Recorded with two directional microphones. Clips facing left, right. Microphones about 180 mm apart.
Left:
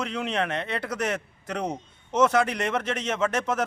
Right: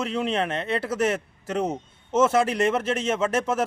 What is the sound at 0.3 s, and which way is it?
Speech, 30° right (ahead or behind).